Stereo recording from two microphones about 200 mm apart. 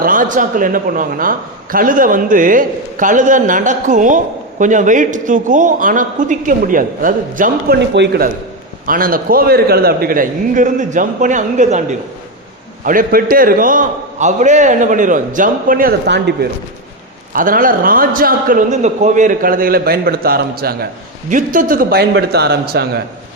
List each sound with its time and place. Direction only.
0.0 s a man's voice: 40° right (ahead or behind)
7.9 s a man's voice: 55° right (ahead or behind)
8.9 s a man's voice: 45° right (ahead or behind)
17.3 s a man's voice: 45° right (ahead or behind)